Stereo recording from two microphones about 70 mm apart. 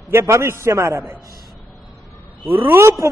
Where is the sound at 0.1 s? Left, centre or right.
Right.